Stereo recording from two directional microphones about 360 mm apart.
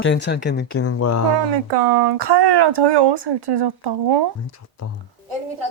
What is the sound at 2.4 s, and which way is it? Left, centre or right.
Speech, right.